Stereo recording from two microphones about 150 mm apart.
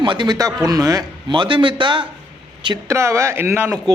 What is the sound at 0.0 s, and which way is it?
A man's voice, 30° right (ahead or behind).